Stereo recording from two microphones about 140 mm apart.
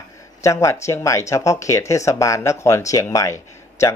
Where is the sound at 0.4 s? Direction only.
20° left (ahead or behind).